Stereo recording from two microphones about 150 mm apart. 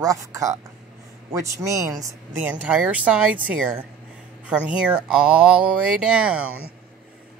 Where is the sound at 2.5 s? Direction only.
10° right (ahead or behind).